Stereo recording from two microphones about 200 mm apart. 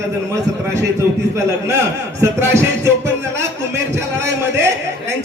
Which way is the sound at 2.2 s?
15° right (ahead or behind).